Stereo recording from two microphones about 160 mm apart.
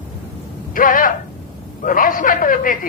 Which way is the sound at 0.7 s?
60° left (ahead or behind).